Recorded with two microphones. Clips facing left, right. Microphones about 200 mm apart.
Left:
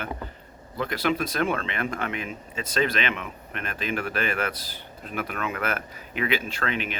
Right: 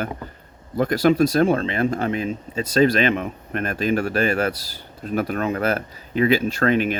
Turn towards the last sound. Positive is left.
turn(degrees=-40)  # may be behind; listen again after turning